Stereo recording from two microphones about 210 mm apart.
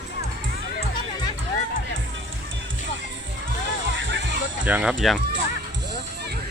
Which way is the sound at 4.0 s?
65° right (ahead or behind).